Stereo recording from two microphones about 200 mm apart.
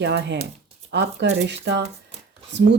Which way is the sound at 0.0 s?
60° right (ahead or behind).